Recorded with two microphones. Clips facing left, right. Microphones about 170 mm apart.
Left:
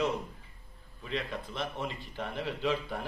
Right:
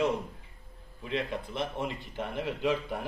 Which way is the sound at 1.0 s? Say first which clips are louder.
Right 3 dB; 20° right (ahead or behind).